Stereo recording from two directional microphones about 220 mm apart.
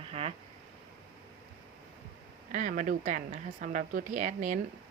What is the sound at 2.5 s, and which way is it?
A woman's voice, 35° right (ahead or behind).